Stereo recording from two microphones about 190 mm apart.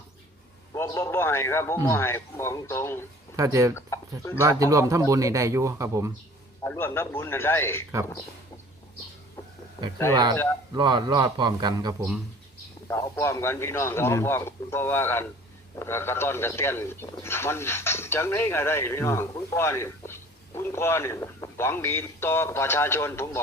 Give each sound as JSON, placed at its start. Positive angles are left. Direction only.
{"t": 0.7, "sound": "speech", "side_deg": 15}
{"t": 3.3, "sound": "a man's voice", "side_deg": -20}
{"t": 3.8, "sound": "speech", "side_deg": 15}
{"t": 4.4, "sound": "a man's voice", "side_deg": -15}
{"t": 6.7, "sound": "speech", "side_deg": 10}
{"t": 10.8, "sound": "a man's voice", "side_deg": -25}
{"t": 12.9, "sound": "speech", "side_deg": 15}